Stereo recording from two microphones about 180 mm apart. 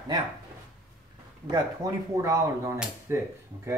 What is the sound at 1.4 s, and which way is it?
Speech, 20° right (ahead or behind).